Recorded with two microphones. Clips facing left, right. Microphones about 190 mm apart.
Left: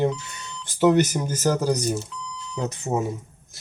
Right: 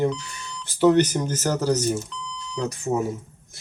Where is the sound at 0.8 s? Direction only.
10° left (ahead or behind).